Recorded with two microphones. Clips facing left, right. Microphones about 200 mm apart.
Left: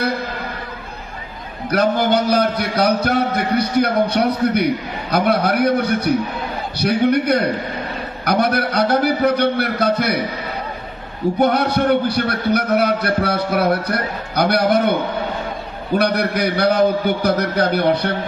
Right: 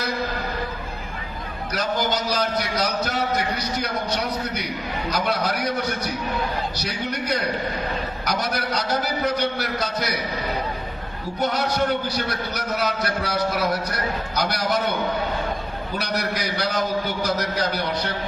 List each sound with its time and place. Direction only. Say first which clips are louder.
1.7 s a man's voice: left 9 dB; 60° left (ahead or behind)
11.3 s a man's voice: left 5 dB; 60° left (ahead or behind)
16.0 s a man's voice: left 9 dB; 60° left (ahead or behind)